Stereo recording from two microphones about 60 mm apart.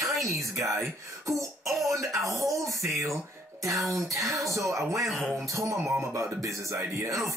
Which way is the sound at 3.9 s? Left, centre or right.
Right.